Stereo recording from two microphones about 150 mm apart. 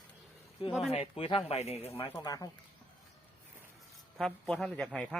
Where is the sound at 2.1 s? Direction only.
25° left (ahead or behind).